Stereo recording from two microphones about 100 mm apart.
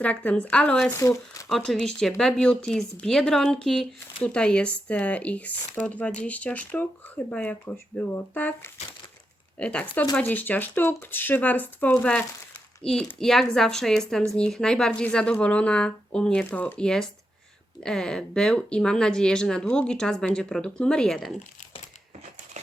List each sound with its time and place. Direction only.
0.0 s speech: 15° left (ahead or behind)
0.9 s speech: 30° left (ahead or behind)
1.5 s speech: 5° left (ahead or behind)